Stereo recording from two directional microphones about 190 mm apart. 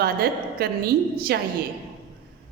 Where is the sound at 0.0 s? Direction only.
55° right (ahead or behind).